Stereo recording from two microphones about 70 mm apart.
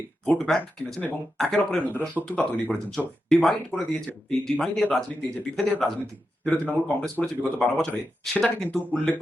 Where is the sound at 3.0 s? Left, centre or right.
Centre.